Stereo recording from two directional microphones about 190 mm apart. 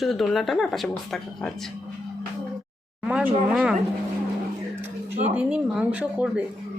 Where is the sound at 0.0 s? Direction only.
Centre (ahead or behind).